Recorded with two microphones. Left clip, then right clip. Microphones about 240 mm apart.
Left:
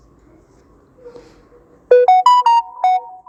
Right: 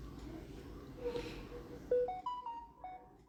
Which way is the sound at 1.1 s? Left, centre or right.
Centre.